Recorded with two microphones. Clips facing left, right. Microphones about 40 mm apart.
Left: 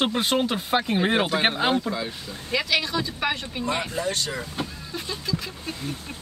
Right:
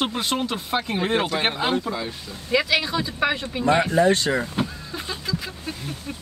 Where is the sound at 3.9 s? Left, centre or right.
Right.